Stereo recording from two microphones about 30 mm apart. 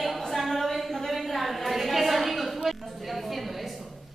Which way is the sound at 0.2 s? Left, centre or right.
Centre.